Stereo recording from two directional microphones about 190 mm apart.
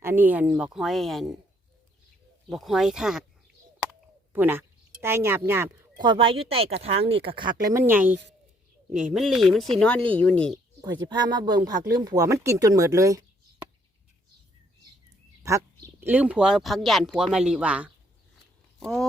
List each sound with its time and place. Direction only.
0.0 s speech: 10° right (ahead or behind)
2.5 s speech: centre (ahead or behind)
4.3 s speech: 10° right (ahead or behind); by 7.5 s 25° right (ahead or behind)
7.7 s speech: 10° right (ahead or behind); by 10.6 s 5° left (ahead or behind)
10.8 s speech: 20° right (ahead or behind)
15.4 s speech: 15° right (ahead or behind); by 19.0 s centre (ahead or behind)